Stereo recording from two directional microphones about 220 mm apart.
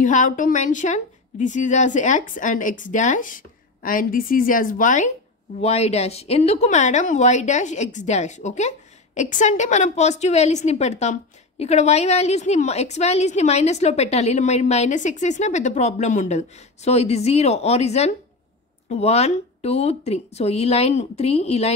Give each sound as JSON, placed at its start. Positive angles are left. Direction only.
{"t": 0.0, "sound": "a woman's voice", "side_deg": 35}